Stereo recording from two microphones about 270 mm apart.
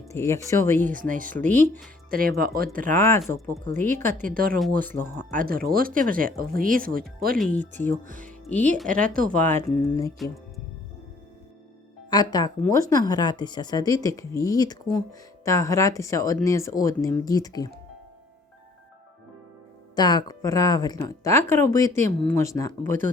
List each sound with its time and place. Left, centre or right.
0.1 s speech: centre
0.9 s speech: right
1.5 s speech: centre
2.0 s speech: right
2.9 s speech: centre
4.2 s speech: right
7.3 s speech: centre
8.0 s speech: right
9.3 s speech: centre
12.1 s speech: centre
20.0 s speech: centre